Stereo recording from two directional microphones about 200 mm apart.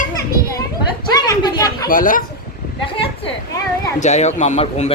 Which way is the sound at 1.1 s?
20° left (ahead or behind).